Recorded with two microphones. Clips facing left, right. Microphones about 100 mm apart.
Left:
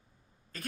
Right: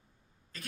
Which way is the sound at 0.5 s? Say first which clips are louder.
Left 6 dB; 45° left (ahead or behind).